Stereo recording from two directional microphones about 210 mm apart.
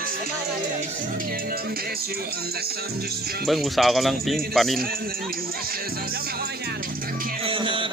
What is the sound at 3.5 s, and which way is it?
Speech, centre (ahead or behind).